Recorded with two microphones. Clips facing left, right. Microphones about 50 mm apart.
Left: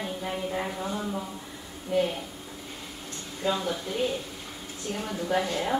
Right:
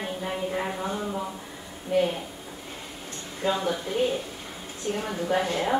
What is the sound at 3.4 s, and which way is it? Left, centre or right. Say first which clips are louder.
Speech: right 2 dB; right.